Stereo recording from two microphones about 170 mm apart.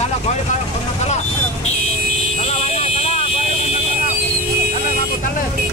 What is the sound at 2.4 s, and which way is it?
Vehicle, 40° left (ahead or behind).